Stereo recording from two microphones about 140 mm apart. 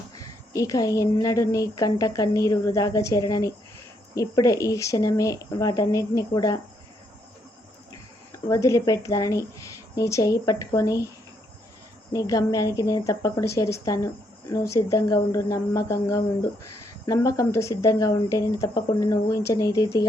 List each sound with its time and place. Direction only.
0.2 s speech: 25° left (ahead or behind)
8.4 s speech: 20° left (ahead or behind)
12.1 s speech: 25° left (ahead or behind)